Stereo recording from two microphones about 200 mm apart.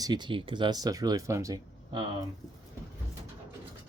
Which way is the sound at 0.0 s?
20° right (ahead or behind).